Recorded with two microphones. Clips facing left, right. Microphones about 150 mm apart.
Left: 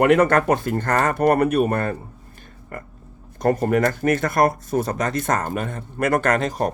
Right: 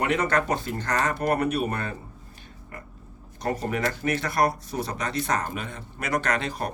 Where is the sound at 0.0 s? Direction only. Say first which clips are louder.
Left 8 dB; 55° left (ahead or behind).